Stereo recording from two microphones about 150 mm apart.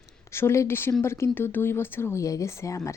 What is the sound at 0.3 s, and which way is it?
Speech, 15° left (ahead or behind).